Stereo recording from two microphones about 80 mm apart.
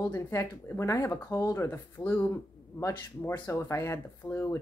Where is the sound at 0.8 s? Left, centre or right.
Left.